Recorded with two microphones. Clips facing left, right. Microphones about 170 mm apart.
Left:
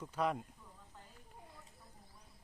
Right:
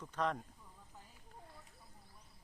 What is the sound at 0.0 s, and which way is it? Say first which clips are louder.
Speech: left 2 dB; 10° left (ahead or behind).